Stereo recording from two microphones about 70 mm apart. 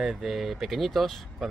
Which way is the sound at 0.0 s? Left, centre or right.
Centre.